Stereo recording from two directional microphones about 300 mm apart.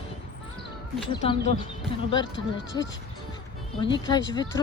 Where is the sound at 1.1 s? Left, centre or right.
Centre.